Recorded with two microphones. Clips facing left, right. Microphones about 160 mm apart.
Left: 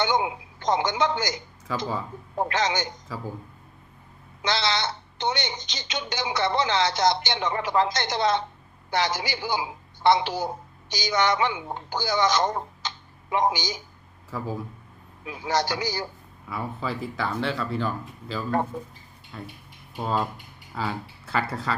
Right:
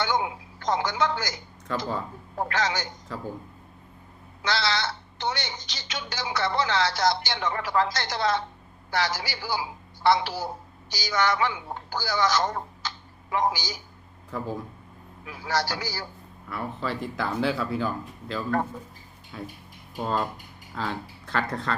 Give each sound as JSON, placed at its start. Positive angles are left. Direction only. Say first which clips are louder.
{"t": 0.0, "sound": "a woman's voice", "louder": "left 2 dB", "side_deg": 20}
{"t": 1.7, "sound": "speech", "louder": "even", "side_deg": 5}
{"t": 2.4, "sound": "speech", "louder": "left 2 dB", "side_deg": 20}
{"t": 4.4, "sound": "a woman's voice", "louder": "left 1 dB", "side_deg": 20}
{"t": 14.3, "sound": "speech", "louder": "even", "side_deg": 5}
{"t": 15.2, "sound": "speech", "louder": "left 2 dB", "side_deg": 20}
{"t": 16.5, "sound": "speech", "louder": "even", "side_deg": 10}
{"t": 20.7, "sound": "speech", "louder": "left 1 dB", "side_deg": 5}